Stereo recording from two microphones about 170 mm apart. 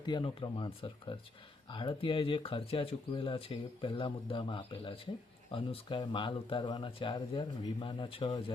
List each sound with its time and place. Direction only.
0.0 s speech: 30° left (ahead or behind)